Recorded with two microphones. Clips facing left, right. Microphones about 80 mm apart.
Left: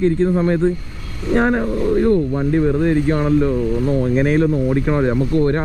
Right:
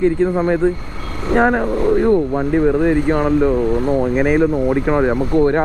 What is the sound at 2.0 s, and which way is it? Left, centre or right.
Speech, right.